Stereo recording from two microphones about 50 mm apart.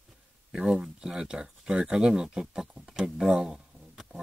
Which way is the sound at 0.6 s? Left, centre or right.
Centre.